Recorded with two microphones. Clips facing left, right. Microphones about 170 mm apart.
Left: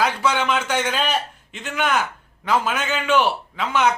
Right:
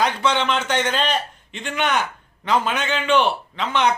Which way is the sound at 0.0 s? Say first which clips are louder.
Even; 10° left (ahead or behind).